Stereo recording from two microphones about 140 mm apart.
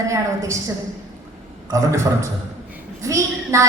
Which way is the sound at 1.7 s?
20° right (ahead or behind).